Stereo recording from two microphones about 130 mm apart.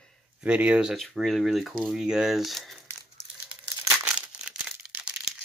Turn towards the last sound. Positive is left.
turn(degrees=-10)  # may be behind; listen again after turning